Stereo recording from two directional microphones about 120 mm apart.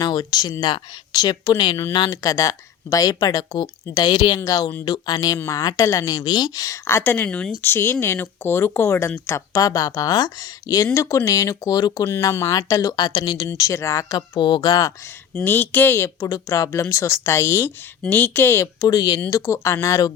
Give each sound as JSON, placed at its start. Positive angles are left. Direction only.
{"t": 0.0, "sound": "speech", "side_deg": 35}
{"t": 2.0, "sound": "speech", "side_deg": 25}
{"t": 7.3, "sound": "speech", "side_deg": 10}
{"t": 9.5, "sound": "speech", "side_deg": 30}
{"t": 13.5, "sound": "speech", "side_deg": 25}
{"t": 14.2, "sound": "speech", "side_deg": 40}
{"t": 15.4, "sound": "speech", "side_deg": 15}